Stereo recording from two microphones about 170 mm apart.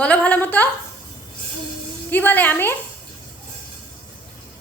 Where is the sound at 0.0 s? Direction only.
10° left (ahead or behind).